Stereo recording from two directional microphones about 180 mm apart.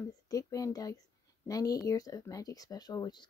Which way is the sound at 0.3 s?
20° left (ahead or behind).